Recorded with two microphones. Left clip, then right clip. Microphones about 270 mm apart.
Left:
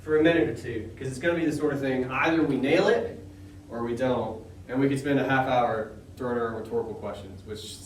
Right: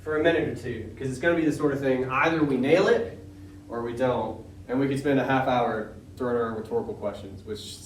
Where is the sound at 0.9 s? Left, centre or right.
Centre.